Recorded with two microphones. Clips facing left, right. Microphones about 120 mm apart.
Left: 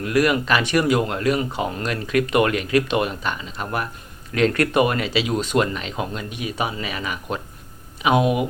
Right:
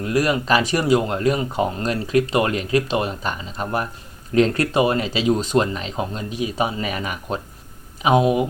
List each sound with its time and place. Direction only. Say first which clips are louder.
0.0 s speech: left 1 dB; 35° right (ahead or behind)